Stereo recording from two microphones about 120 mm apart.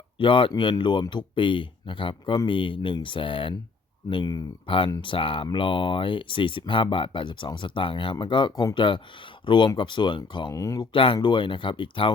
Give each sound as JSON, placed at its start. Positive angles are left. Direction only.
{"t": 0.2, "sound": "speech", "side_deg": 45}
{"t": 4.6, "sound": "speech", "side_deg": 45}
{"t": 10.5, "sound": "speech", "side_deg": 25}
{"t": 10.9, "sound": "speech", "side_deg": 50}